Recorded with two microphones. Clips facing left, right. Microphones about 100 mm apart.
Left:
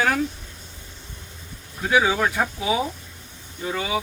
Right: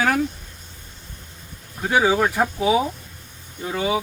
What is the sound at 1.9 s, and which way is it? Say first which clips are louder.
Speech: right 2 dB; 35° right (ahead or behind).